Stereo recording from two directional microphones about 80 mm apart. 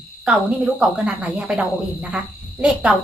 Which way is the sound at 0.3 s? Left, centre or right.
Centre.